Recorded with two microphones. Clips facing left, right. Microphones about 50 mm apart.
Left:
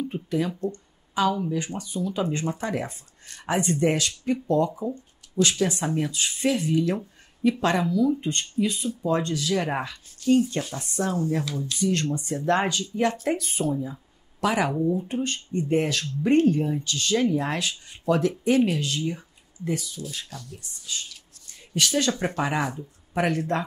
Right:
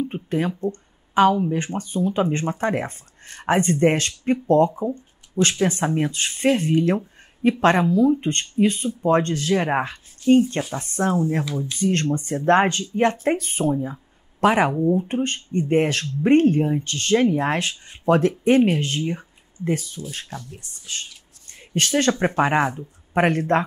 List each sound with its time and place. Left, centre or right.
0.0 s speech: right
20.2 s speech: right
20.6 s speech: right
21.5 s a sound: right
22.2 s speech: right